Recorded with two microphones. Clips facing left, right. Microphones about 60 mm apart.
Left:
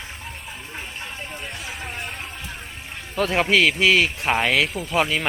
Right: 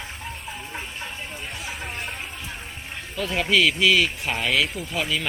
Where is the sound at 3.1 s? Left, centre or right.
Left.